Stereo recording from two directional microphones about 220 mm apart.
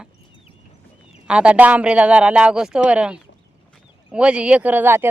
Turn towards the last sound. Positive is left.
turn(degrees=-10)  # may be behind; listen again after turning